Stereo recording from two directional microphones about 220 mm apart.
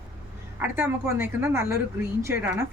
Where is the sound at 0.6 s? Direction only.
10° right (ahead or behind).